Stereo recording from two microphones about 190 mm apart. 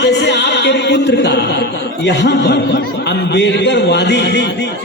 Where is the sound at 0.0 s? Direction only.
65° left (ahead or behind).